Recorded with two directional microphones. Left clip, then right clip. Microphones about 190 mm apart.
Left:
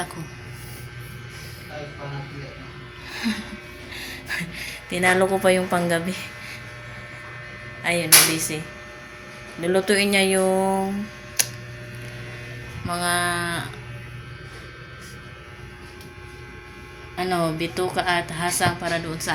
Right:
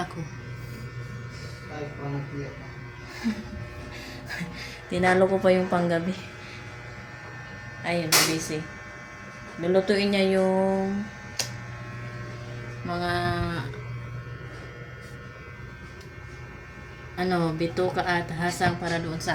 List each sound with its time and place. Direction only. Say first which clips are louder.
3.9 s a woman's voice: left 8 dB; 5° left (ahead or behind)
7.9 s music: left 5 dB; 20° left (ahead or behind)
9.6 s a woman's voice: left 3 dB; 15° left (ahead or behind)
10.5 s music: left 3 dB; 30° left (ahead or behind)
11.4 s a sound: left 6 dB; 20° left (ahead or behind)
12.9 s a woman's voice: left 4 dB; 5° left (ahead or behind)
17.2 s a woman's voice: left 3 dB; 5° left (ahead or behind)